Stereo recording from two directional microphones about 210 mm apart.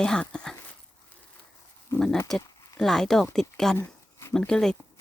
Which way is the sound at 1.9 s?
Centre (ahead or behind).